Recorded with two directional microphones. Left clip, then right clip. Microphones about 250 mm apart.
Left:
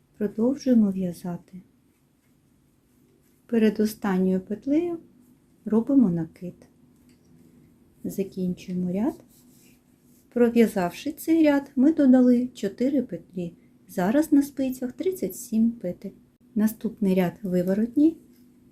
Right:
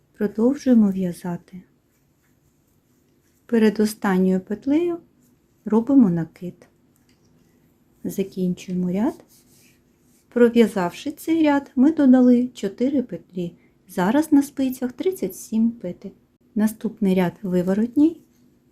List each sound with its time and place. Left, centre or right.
0.2 s speech: centre
3.4 s speech: centre
8.0 s speech: centre
10.2 s speech: centre